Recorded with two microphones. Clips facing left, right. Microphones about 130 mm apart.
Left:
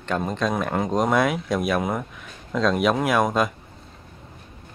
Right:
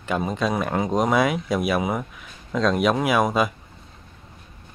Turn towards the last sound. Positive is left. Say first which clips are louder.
# even
turn(degrees=0)  # may be behind; listen again after turning